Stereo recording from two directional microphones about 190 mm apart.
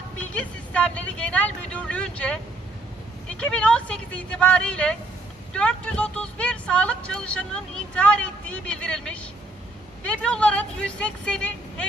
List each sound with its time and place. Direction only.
0.3 s speech: 5° left (ahead or behind)
3.4 s speech: 5° left (ahead or behind)